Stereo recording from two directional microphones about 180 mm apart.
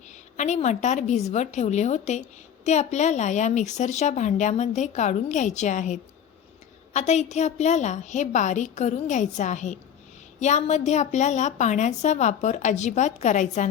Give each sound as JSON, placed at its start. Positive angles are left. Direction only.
{"t": 0.3, "sound": "a woman's voice", "side_deg": 40}